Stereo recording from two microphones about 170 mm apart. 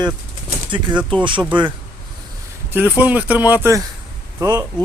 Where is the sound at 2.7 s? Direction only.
10° right (ahead or behind).